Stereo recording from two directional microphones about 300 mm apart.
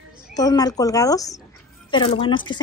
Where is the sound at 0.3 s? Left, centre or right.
Centre.